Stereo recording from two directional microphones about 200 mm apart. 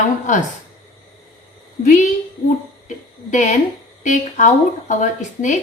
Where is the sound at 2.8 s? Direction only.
40° left (ahead or behind).